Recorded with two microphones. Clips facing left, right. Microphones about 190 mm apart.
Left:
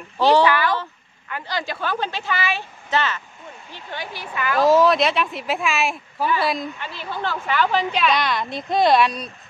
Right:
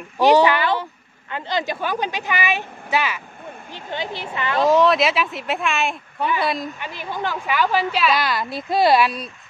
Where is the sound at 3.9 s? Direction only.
20° right (ahead or behind).